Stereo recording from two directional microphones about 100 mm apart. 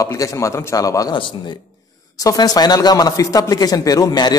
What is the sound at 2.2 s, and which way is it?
Speech, 40° left (ahead or behind).